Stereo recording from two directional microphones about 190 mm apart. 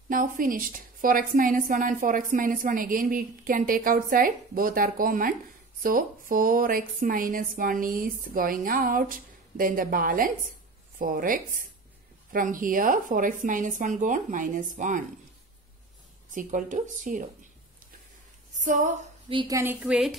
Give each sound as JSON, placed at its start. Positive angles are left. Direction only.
{"t": 0.1, "sound": "a woman's voice", "side_deg": -45}
{"t": 16.3, "sound": "a woman's voice", "side_deg": -45}
{"t": 18.6, "sound": "a woman's voice", "side_deg": -40}
{"t": 19.2, "sound": "a woman's voice", "side_deg": -20}